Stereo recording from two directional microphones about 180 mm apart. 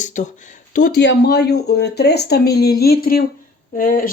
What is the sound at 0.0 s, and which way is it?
Speech, 45° left (ahead or behind).